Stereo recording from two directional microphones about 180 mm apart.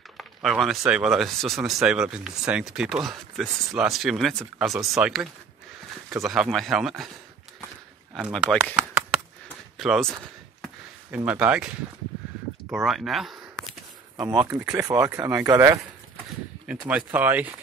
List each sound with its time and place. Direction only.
0.2 s speech: centre (ahead or behind)
8.1 s speech: 5° right (ahead or behind)
8.7 s chop: 5° right (ahead or behind)
9.8 s speech: centre (ahead or behind)
10.6 s a sound: 5° right (ahead or behind)
12.7 s speech: centre (ahead or behind)
14.1 s speech: 20° right (ahead or behind)